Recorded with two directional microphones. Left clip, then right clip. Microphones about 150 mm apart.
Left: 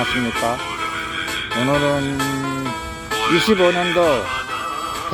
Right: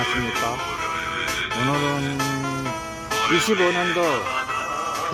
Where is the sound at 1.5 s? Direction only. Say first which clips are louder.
Left 7 dB; 15° right (ahead or behind).